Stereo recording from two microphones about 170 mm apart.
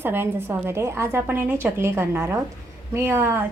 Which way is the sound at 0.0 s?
15° right (ahead or behind).